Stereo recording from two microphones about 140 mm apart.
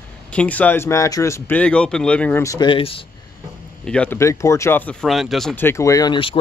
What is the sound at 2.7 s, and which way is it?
Speech, 40° left (ahead or behind).